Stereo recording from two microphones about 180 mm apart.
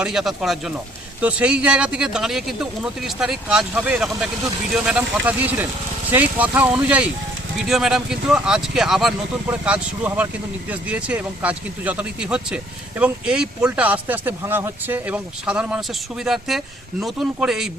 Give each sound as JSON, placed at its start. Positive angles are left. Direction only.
{"t": 0.0, "sound": "speech", "side_deg": 0}